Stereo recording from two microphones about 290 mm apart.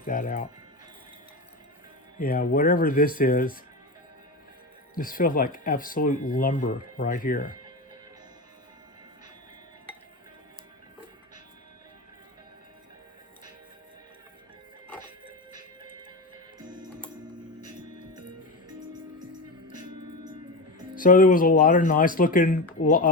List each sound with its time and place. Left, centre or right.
0.0 s speech: left
2.1 s speech: left
4.9 s speech: left
16.6 s music: centre
20.9 s speech: left